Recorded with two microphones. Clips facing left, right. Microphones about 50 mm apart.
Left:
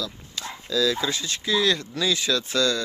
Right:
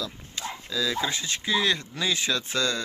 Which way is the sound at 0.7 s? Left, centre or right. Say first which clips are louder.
Left 5 dB; centre.